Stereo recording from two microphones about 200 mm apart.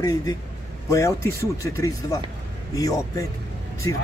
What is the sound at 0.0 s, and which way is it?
Speech, 20° left (ahead or behind).